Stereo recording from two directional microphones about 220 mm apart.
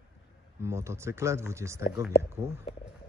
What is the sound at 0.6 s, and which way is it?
Speech, 15° right (ahead or behind).